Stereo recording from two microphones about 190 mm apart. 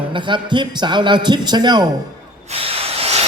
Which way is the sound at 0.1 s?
25° right (ahead or behind).